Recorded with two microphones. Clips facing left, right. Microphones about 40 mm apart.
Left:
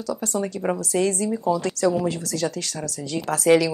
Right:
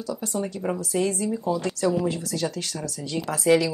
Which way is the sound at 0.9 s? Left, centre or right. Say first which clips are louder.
Left 2 dB; left.